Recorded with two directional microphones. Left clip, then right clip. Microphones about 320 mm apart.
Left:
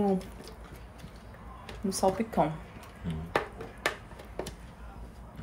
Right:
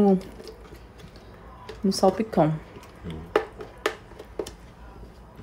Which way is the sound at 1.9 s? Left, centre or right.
Right.